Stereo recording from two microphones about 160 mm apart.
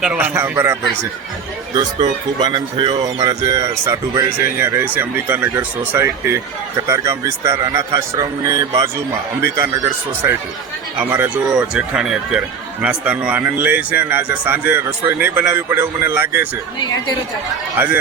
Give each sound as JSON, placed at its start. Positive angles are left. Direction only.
{"t": 0.0, "sound": "speech", "side_deg": -10}
{"t": 1.7, "sound": "speech", "side_deg": -25}
{"t": 16.8, "sound": "speech", "side_deg": 25}
{"t": 17.7, "sound": "speech", "side_deg": -10}